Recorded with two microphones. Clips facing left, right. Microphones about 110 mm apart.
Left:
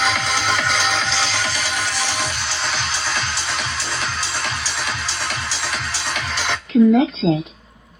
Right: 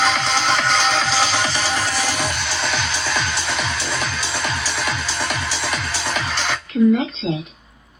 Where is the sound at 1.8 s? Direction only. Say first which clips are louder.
Right 2 dB; 45° right (ahead or behind).